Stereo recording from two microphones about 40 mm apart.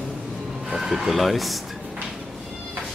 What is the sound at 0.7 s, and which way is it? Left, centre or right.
Speech, centre.